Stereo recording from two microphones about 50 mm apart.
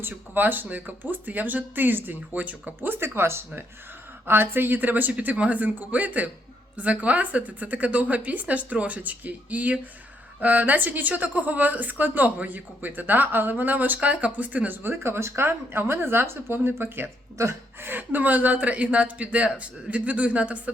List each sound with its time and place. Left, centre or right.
0.0 s speech: right
2.8 s speech: right
15.0 s speech: right
17.4 s speech: right
17.7 s speech: right